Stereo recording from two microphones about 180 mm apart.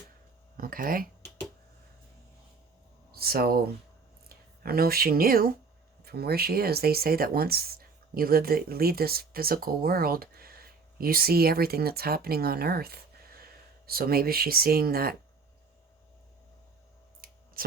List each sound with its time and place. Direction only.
0.5 s speech: 50° right (ahead or behind)
3.1 s speech: 55° right (ahead or behind)
4.6 s speech: 55° right (ahead or behind)
17.2 s clicking: 55° right (ahead or behind)